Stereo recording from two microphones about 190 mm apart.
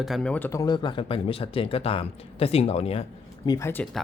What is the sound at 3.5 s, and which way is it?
Speech, 15° left (ahead or behind).